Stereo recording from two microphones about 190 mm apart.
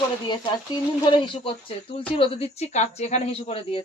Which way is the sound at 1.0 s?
25° left (ahead or behind).